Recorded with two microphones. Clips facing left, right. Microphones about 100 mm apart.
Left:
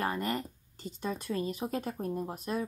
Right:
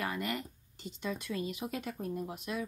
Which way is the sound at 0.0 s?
40° left (ahead or behind).